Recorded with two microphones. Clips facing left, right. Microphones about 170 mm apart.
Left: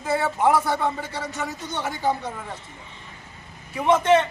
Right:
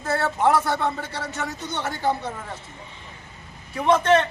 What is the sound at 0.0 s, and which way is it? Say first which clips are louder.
Speech: even; 10° left (ahead or behind).